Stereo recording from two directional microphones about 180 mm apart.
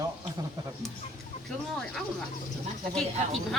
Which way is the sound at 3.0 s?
Centre (ahead or behind).